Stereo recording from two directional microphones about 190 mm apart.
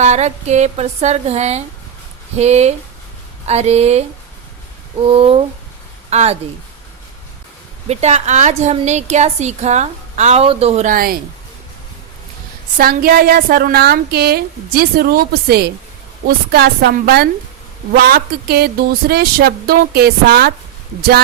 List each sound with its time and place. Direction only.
0.0 s a woman's voice: 35° right (ahead or behind)
5.1 s a woman's voice: 30° right (ahead or behind)
7.9 s a woman's voice: 35° right (ahead or behind)
10.9 s a woman's voice: 50° right (ahead or behind)
12.7 s a woman's voice: 50° right (ahead or behind)